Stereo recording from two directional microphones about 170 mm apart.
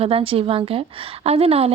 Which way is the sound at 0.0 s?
35° right (ahead or behind).